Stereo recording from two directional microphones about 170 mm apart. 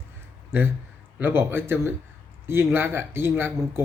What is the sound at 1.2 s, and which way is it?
Speech, 15° right (ahead or behind).